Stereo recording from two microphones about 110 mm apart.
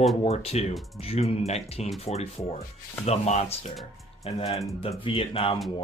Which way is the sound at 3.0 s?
75° left (ahead or behind).